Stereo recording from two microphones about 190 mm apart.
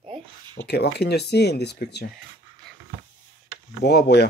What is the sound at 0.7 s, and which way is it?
Speech, 60° left (ahead or behind).